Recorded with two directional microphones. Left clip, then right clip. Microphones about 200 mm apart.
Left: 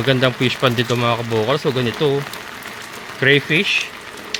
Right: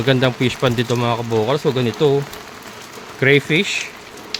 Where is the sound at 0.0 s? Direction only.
25° right (ahead or behind).